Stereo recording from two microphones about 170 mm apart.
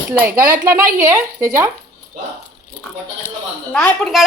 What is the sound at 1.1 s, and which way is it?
Speech, 15° right (ahead or behind).